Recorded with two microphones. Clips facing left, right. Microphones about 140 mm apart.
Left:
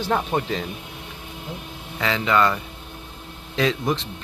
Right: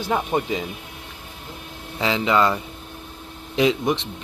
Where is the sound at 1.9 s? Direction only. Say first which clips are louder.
Right 1 dB; 20° right (ahead or behind).